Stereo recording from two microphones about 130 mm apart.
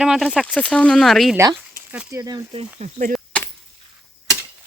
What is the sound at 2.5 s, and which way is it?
Speech, 65° right (ahead or behind).